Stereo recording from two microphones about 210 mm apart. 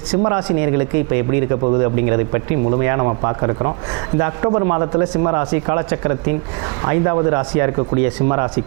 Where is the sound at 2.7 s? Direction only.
20° right (ahead or behind).